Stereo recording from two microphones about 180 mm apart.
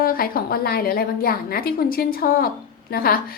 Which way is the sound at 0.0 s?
55° left (ahead or behind).